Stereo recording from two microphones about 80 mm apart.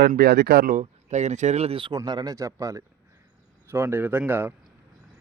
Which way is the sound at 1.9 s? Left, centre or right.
Right.